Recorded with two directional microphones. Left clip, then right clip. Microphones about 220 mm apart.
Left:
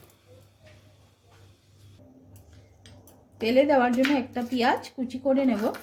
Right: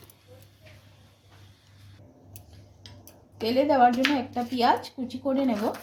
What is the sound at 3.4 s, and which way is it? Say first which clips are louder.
A woman's voice: even; 25° left (ahead or behind).